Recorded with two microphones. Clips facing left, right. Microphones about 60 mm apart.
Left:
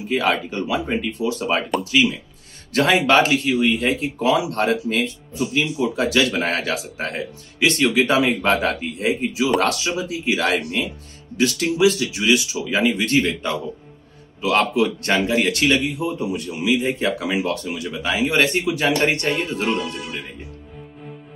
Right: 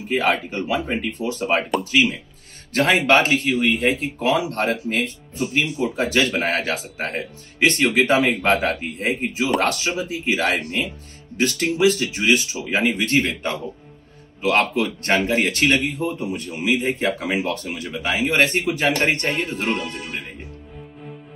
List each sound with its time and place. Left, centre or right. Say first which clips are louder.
0.0 s a man's voice: even; right